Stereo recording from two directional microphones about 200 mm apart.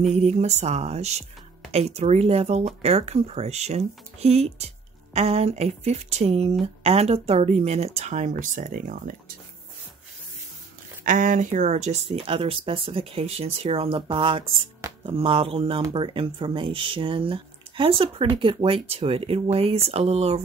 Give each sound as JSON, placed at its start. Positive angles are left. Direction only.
{"t": 0.1, "sound": "speech", "side_deg": -35}
{"t": 11.1, "sound": "speech", "side_deg": -40}